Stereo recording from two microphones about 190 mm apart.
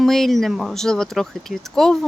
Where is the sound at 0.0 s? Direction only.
Centre (ahead or behind).